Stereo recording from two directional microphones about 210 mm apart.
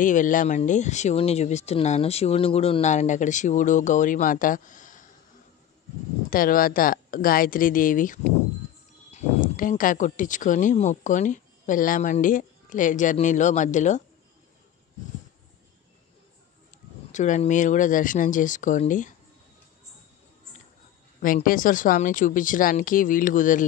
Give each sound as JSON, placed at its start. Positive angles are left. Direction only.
{"t": 0.0, "sound": "speech", "side_deg": 40}
{"t": 6.3, "sound": "speech", "side_deg": 40}
{"t": 17.1, "sound": "speech", "side_deg": 35}
{"t": 21.2, "sound": "speech", "side_deg": 40}